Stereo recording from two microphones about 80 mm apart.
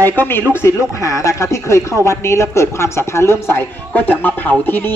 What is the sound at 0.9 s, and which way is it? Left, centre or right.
A woman's voice, left.